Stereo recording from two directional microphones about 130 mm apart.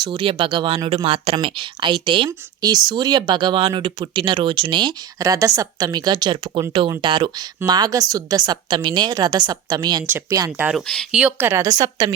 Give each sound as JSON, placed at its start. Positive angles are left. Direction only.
{"t": 0.0, "sound": "a woman's voice", "side_deg": -40}
{"t": 10.6, "sound": "speech", "side_deg": -10}